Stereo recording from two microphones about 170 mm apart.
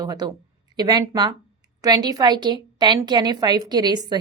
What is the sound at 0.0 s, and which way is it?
A woman's voice, 20° right (ahead or behind).